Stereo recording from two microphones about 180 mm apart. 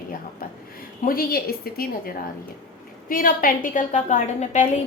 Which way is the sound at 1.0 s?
55° left (ahead or behind).